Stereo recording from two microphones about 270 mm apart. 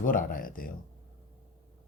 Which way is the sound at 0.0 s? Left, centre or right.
Left.